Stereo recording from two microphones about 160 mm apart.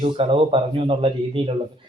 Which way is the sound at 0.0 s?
35° right (ahead or behind).